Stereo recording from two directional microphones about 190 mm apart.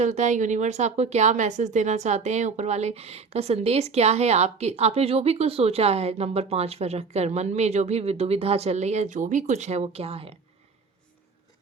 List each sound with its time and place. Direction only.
0.0 s a woman's voice: 40° right (ahead or behind)